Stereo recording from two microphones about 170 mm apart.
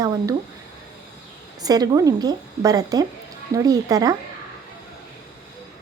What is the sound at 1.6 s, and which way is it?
A woman's voice, 20° right (ahead or behind).